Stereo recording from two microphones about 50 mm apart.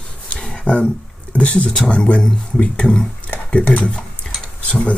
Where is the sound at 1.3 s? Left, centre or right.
Left.